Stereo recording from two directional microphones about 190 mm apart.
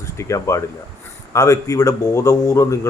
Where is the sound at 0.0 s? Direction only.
15° left (ahead or behind).